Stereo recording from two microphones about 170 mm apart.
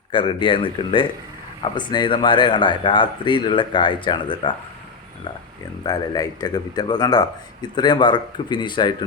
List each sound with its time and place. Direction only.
0.1 s a man's voice: 30° left (ahead or behind)
5.8 s a man's voice: 25° left (ahead or behind)